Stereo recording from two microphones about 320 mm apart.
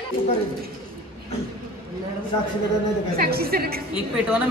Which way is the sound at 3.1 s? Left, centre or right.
Right.